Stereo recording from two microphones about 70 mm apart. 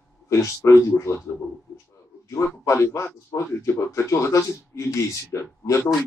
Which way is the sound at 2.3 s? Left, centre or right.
Left.